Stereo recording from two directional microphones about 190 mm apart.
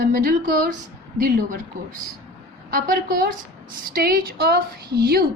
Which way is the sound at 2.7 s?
50° right (ahead or behind).